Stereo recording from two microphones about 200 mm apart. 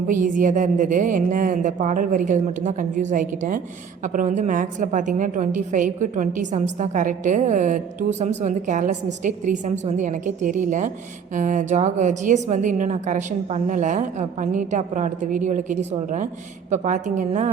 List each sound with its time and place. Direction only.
0.1 s a woman's voice: 40° right (ahead or behind)